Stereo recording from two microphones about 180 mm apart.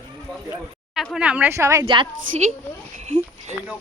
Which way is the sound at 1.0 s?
5° right (ahead or behind).